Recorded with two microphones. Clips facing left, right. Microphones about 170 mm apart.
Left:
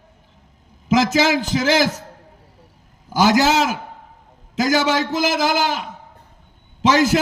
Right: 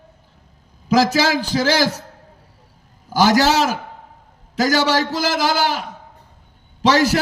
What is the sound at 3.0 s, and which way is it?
A man's voice, 20° left (ahead or behind).